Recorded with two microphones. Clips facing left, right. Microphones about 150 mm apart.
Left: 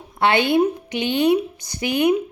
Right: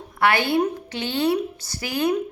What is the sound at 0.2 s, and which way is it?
A woman's voice, 20° left (ahead or behind).